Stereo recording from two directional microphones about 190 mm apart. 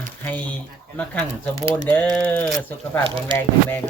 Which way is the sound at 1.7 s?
10° left (ahead or behind).